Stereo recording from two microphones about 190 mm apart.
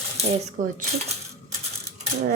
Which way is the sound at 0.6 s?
45° right (ahead or behind).